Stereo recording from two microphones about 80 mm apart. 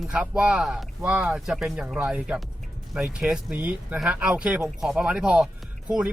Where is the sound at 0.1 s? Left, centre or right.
Centre.